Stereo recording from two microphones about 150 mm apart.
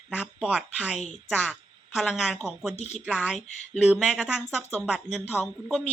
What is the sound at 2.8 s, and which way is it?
Speech, 50° left (ahead or behind).